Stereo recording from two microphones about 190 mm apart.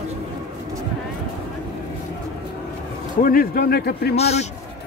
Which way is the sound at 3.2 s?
50° left (ahead or behind).